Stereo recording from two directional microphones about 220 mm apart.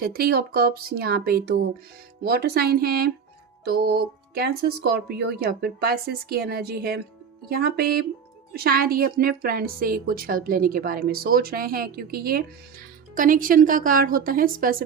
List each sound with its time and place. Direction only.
0.0 s a woman's voice: 45° right (ahead or behind)